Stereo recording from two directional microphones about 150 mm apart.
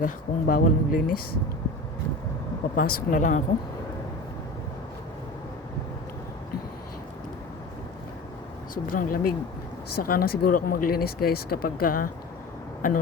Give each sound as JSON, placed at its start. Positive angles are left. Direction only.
{"t": 0.0, "sound": "speech", "side_deg": 70}
{"t": 2.7, "sound": "a woman's voice", "side_deg": 60}
{"t": 8.7, "sound": "speech", "side_deg": 65}
{"t": 10.0, "sound": "speech", "side_deg": 80}